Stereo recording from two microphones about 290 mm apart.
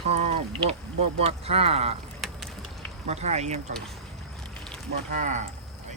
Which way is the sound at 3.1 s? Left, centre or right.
Right.